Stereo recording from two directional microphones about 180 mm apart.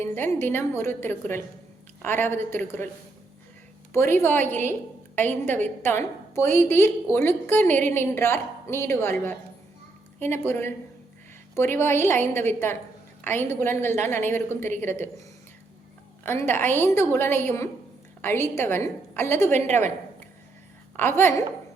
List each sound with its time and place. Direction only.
0.0 s a woman's voice: 15° left (ahead or behind)
3.9 s a woman's voice: 15° left (ahead or behind)
16.2 s a woman's voice: 10° left (ahead or behind)
19.5 s a woman's voice: 40° right (ahead or behind)
20.9 s a woman's voice: 10° left (ahead or behind)